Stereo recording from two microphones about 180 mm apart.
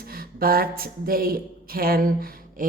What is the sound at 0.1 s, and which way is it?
Speech, 55° right (ahead or behind).